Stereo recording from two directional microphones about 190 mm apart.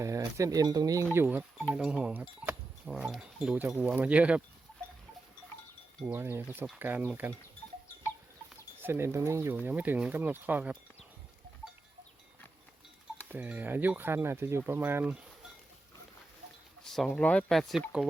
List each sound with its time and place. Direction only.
0.0 s speech: 15° right (ahead or behind)
6.0 s speech: 10° right (ahead or behind)
8.8 s speech: 10° right (ahead or behind)
13.2 s speech: 10° right (ahead or behind)
16.8 s speech: centre (ahead or behind)